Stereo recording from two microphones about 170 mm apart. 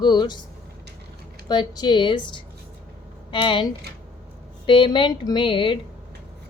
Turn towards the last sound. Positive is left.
turn(degrees=30)  # may be behind; listen again after turning